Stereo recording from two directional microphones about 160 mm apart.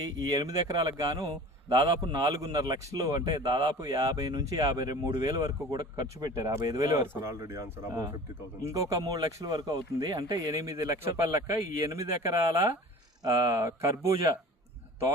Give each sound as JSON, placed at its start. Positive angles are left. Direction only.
{"t": 0.0, "sound": "a man's voice", "side_deg": -25}